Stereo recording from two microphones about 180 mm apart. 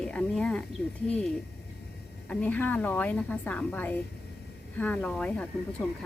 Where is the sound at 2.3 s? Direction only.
10° left (ahead or behind).